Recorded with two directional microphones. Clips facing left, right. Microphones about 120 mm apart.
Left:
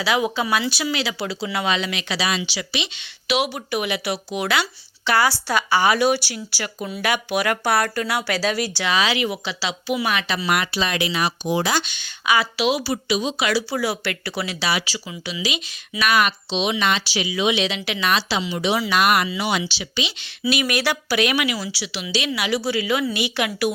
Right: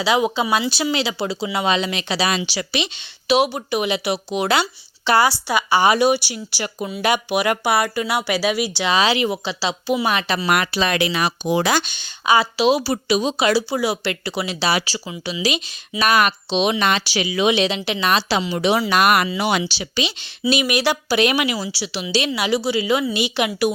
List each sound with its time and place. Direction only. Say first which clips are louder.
0.0 s speech: right 3 dB; 25° right (ahead or behind); by 2.9 s 40° right (ahead or behind)
3.2 s speech: right 5 dB; 30° right (ahead or behind); by 11.8 s 70° right (ahead or behind)
11.9 s speech: right 4 dB; 30° right (ahead or behind)
14.6 s speech: right 5 dB; 35° right (ahead or behind)
18.3 s speech: right 3 dB; 50° right (ahead or behind)
19.6 s speech: right 3 dB; 40° right (ahead or behind)
20.4 s speech: right 3 dB; 20° right (ahead or behind)